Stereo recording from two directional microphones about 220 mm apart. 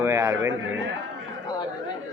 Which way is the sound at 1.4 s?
20° left (ahead or behind).